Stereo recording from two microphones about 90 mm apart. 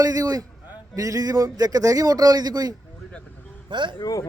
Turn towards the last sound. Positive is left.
turn(degrees=40)  # may be behind; listen again after turning